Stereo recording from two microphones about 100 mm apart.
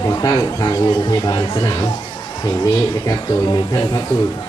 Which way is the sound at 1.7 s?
40° left (ahead or behind).